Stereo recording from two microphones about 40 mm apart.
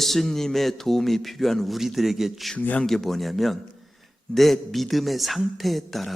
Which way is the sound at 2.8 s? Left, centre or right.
Centre.